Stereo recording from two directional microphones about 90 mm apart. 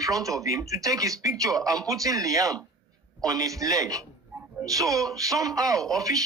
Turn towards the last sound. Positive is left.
turn(degrees=-40)  # may be behind; listen again after turning